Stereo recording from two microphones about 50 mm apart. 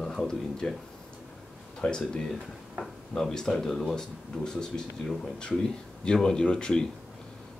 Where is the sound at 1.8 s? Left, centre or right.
Centre.